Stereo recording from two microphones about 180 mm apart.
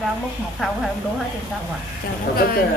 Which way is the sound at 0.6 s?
Centre (ahead or behind).